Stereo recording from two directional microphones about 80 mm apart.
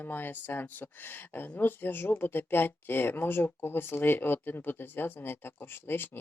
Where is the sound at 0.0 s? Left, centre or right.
Left.